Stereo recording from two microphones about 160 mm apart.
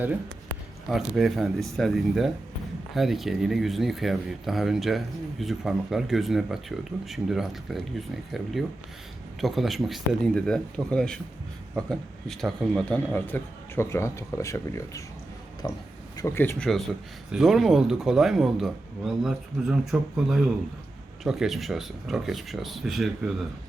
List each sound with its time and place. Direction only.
0.9 s speech: centre (ahead or behind)
16.6 s speech: centre (ahead or behind)